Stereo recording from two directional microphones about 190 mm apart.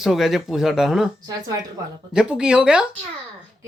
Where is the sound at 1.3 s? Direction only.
20° right (ahead or behind).